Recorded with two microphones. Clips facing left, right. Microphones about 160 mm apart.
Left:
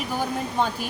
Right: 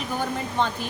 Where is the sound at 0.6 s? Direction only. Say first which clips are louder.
Even; 5° left (ahead or behind).